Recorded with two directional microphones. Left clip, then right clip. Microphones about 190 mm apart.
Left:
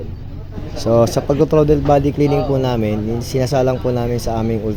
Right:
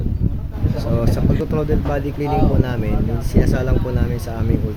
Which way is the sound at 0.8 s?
35° left (ahead or behind).